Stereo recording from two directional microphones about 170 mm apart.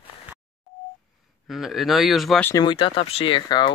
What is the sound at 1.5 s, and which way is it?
Speech, centre (ahead or behind).